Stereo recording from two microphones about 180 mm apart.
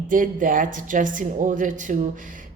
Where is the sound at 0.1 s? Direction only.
50° right (ahead or behind).